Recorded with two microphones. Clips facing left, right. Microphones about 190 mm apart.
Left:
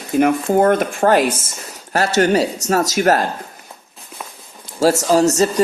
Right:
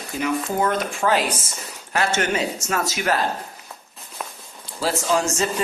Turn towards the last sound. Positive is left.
turn(degrees=40)  # may be behind; listen again after turning